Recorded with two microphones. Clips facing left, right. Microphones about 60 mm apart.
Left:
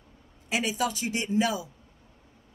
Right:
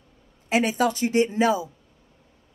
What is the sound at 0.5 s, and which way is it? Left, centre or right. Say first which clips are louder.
Speech: right 6 dB; right.